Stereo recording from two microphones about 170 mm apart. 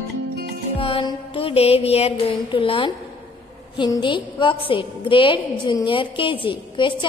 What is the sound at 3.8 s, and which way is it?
A woman's voice, 25° left (ahead or behind).